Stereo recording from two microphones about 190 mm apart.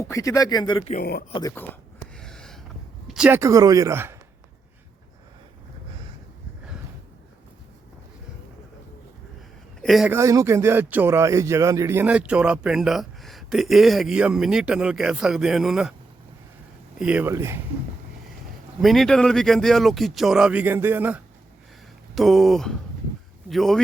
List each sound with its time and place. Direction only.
0.0 s speech: 15° left (ahead or behind)
2.1 s a sound: 5° left (ahead or behind)
3.1 s speech: 5° right (ahead or behind)
9.8 s speech: centre (ahead or behind)
10.1 s speech: 15° right (ahead or behind)
17.0 s speech: 5° right (ahead or behind)
18.8 s speech: centre (ahead or behind)